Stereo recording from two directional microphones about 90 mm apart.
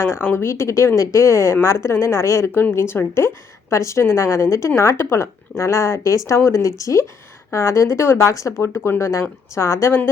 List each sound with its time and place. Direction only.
0.0 s a woman's voice: 30° left (ahead or behind)
2.5 s a woman's voice: 20° left (ahead or behind); by 9.9 s 35° left (ahead or behind)